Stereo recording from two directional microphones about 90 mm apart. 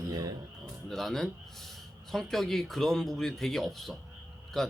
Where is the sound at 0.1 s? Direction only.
45° right (ahead or behind).